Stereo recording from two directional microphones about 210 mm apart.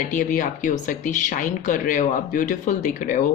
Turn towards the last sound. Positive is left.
turn(degrees=35)  # may be behind; listen again after turning